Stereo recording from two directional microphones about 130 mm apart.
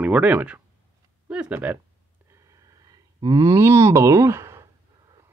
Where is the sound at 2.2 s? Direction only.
25° right (ahead or behind).